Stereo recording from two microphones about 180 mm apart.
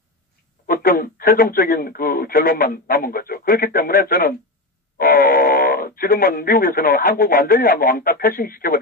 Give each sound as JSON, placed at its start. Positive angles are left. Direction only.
{"t": 0.7, "sound": "speech", "side_deg": 55}